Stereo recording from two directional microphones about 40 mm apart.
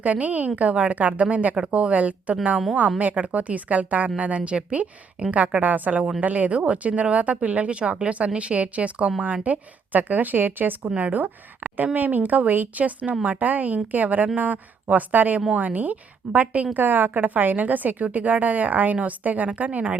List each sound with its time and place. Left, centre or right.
0.0 s speech: right
10.8 s a woman's voice: right
16.7 s a woman's voice: right